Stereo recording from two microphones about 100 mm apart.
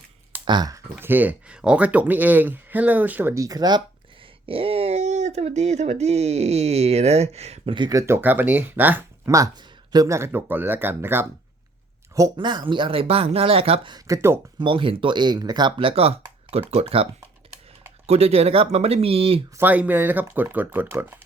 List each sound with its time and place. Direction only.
0.4 s speech: 45° right (ahead or behind)
0.9 s speech: 20° right (ahead or behind)
3.3 s speech: 35° right (ahead or behind)
4.4 s speech: 70° right (ahead or behind)
7.8 s speech: 40° right (ahead or behind)
8.0 s speech: 20° right (ahead or behind)
9.2 s speech: 35° right (ahead or behind)
12.4 s speech: 50° right (ahead or behind); by 13.9 s 70° right (ahead or behind)
14.6 s speech: 60° right (ahead or behind)
15.8 s speech: 70° right (ahead or behind)
16.5 s speech: 85° right
19.5 s speech: 15° right (ahead or behind)